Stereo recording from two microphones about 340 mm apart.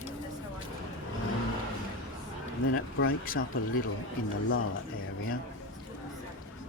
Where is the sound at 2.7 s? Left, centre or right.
Left.